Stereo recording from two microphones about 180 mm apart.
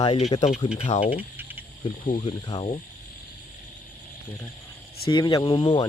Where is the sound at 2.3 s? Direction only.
25° left (ahead or behind).